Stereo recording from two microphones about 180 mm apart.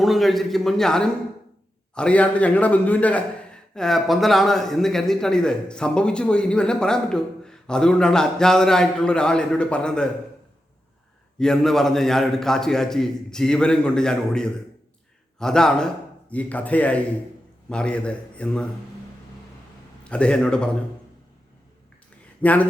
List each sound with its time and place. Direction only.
0.0 s a man's voice: centre (ahead or behind)
11.3 s a man's voice: 5° left (ahead or behind)
20.1 s a man's voice: 5° left (ahead or behind)
22.4 s speech: 10° left (ahead or behind)